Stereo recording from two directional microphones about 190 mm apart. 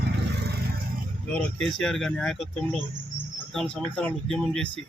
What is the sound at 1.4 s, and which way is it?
Speech, 5° left (ahead or behind).